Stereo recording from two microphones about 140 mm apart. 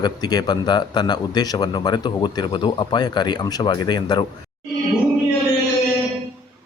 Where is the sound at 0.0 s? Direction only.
30° left (ahead or behind).